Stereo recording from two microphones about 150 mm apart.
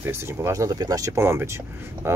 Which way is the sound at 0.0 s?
15° right (ahead or behind).